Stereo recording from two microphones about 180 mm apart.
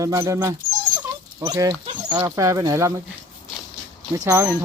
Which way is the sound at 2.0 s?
10° right (ahead or behind).